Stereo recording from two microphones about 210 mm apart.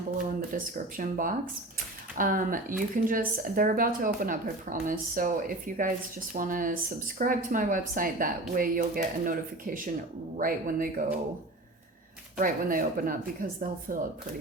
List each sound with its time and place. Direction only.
0.5 s speech: 40° right (ahead or behind)
12.4 s speech: 40° right (ahead or behind)